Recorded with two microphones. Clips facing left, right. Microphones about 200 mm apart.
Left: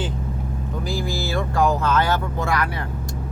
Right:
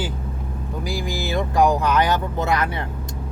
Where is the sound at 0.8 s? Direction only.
15° right (ahead or behind).